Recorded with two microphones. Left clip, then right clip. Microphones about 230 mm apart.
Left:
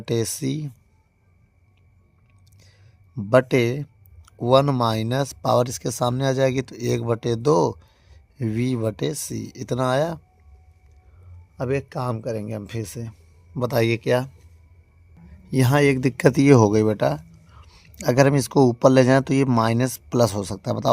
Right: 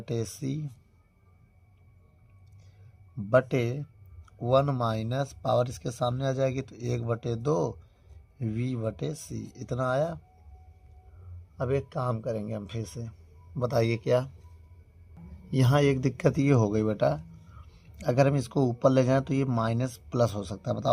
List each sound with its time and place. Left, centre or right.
0.0 s speech: left
3.2 s speech: left
11.5 s speech: left
15.4 s speech: left